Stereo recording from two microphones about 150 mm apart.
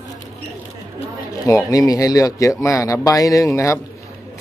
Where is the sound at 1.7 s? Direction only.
25° left (ahead or behind).